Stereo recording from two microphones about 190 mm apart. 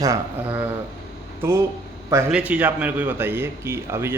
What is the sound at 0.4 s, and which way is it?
Speech, 10° right (ahead or behind).